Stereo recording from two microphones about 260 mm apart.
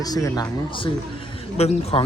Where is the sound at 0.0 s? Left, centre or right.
Centre.